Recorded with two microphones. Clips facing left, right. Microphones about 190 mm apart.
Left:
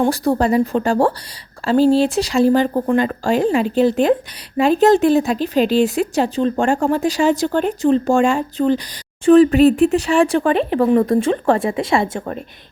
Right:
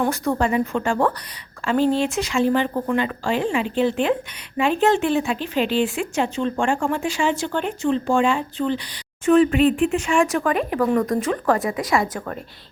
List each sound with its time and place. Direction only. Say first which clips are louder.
0.0 s speech: left 5 dB; 35° left (ahead or behind)